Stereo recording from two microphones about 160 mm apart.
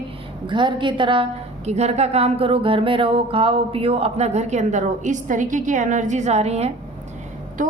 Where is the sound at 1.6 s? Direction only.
45° right (ahead or behind).